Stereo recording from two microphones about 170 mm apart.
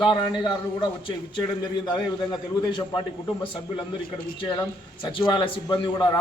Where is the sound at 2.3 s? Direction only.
25° left (ahead or behind).